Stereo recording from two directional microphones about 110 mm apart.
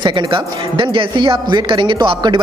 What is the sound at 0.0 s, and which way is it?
A man's voice, 45° right (ahead or behind).